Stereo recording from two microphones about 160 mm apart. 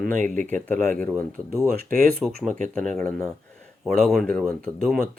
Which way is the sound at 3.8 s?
Centre (ahead or behind).